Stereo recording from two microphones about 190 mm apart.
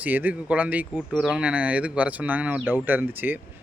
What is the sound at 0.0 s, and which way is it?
Speech, 10° right (ahead or behind).